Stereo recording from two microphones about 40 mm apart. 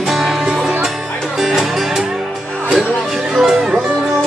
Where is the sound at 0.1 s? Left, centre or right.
Centre.